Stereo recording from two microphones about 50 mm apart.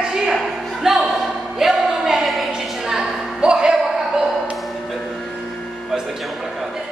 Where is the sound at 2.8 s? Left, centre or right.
Centre.